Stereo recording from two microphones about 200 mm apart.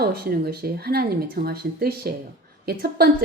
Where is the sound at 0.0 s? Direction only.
50° right (ahead or behind).